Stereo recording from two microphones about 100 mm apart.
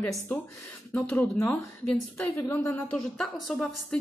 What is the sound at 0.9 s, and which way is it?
A woman's voice, 20° left (ahead or behind).